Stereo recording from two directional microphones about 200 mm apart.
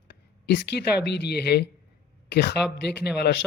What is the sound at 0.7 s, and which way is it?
Speech, 55° left (ahead or behind).